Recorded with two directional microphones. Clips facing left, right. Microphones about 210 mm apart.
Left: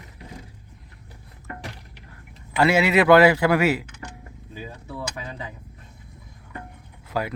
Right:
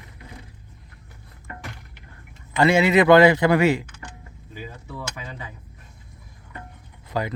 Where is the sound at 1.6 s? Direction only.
35° left (ahead or behind).